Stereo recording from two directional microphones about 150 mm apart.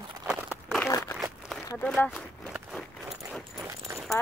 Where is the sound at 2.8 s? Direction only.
5° left (ahead or behind).